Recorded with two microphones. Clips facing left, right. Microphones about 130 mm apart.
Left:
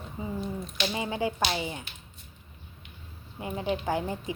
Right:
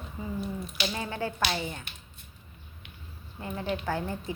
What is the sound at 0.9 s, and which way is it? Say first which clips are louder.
Child singing: left 6 dB; 15° left (ahead or behind).